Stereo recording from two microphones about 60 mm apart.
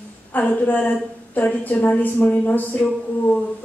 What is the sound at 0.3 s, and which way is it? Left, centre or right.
A woman's voice, left.